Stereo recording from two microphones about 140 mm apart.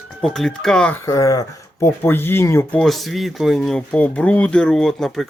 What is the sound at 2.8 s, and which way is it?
Speech, centre (ahead or behind).